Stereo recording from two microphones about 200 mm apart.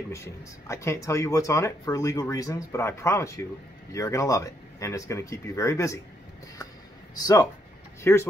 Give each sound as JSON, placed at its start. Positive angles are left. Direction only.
{"t": 0.1, "sound": "speech", "side_deg": 15}
{"t": 8.0, "sound": "speech", "side_deg": 15}